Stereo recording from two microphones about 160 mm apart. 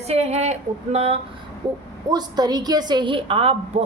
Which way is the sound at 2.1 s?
25° right (ahead or behind).